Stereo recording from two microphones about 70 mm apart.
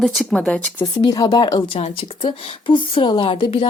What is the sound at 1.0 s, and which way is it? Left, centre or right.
Speech, left.